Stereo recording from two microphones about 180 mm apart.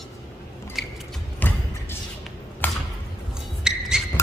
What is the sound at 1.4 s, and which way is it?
Music, 10° left (ahead or behind).